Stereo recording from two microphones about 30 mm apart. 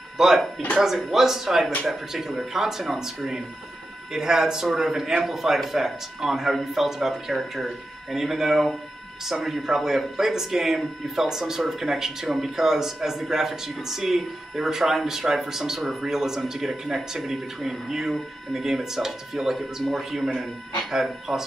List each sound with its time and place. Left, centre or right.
0.8 s speech: centre
4.1 s speech: centre